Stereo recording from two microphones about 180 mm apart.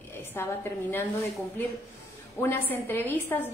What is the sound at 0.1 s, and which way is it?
Speech, 10° left (ahead or behind).